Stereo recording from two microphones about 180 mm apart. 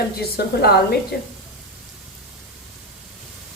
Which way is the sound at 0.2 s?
60° left (ahead or behind).